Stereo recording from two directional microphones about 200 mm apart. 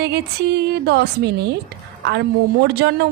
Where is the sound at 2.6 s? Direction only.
55° right (ahead or behind).